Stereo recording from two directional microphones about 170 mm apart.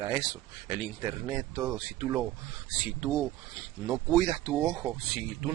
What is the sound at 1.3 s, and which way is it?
Speech, 20° right (ahead or behind).